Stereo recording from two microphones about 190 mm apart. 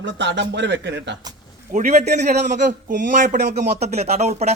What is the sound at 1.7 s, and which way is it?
Speech, 40° right (ahead or behind).